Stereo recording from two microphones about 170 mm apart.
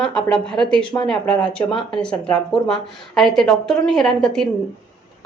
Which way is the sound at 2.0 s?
5° left (ahead or behind).